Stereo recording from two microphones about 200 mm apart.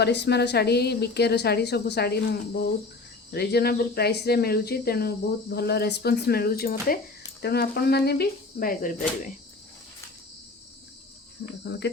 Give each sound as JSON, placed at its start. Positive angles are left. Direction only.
{"t": 0.0, "sound": "a woman's voice", "side_deg": 55}
{"t": 11.6, "sound": "cricket", "side_deg": 60}